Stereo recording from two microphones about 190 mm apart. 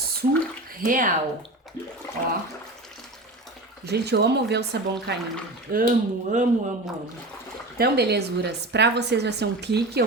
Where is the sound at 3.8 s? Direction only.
60° right (ahead or behind).